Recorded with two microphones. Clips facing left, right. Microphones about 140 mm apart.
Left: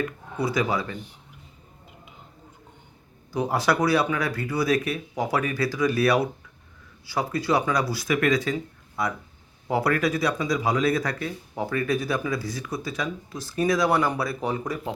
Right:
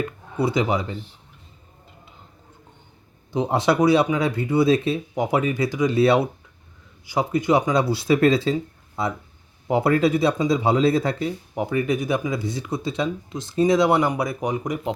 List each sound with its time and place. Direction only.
0.3 s speech: 25° right (ahead or behind)
3.3 s speech: 20° right (ahead or behind)